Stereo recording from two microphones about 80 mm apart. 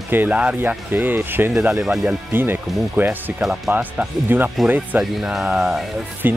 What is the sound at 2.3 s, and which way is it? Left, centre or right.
Speech, right.